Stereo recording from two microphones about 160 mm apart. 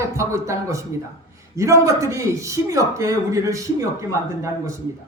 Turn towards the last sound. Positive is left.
turn(degrees=-20)  # may be behind; listen again after turning